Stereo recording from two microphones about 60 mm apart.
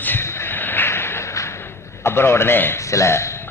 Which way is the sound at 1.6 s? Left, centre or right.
Left.